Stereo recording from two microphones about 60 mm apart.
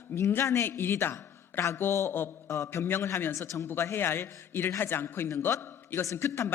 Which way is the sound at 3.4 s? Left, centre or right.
Left.